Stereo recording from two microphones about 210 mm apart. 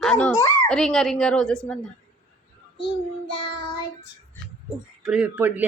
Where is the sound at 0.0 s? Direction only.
5° left (ahead or behind).